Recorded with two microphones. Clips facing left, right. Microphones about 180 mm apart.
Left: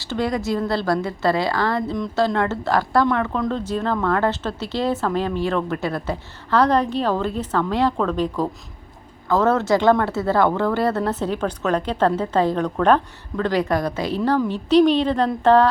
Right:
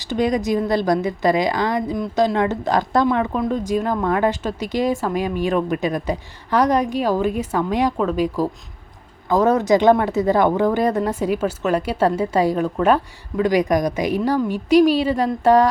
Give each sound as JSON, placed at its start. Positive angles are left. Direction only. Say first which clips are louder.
{"t": 0.0, "sound": "speech", "louder": "right 3 dB", "side_deg": -15}